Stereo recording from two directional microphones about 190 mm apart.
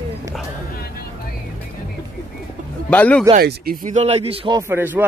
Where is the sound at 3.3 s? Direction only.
50° right (ahead or behind); by 5.0 s 10° right (ahead or behind).